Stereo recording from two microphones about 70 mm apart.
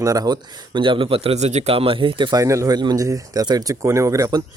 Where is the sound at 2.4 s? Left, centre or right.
Right.